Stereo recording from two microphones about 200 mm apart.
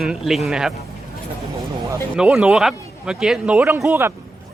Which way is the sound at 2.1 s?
5° right (ahead or behind).